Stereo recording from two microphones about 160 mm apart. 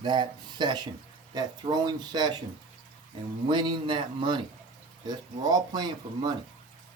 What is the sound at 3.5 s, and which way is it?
Speech, 30° right (ahead or behind).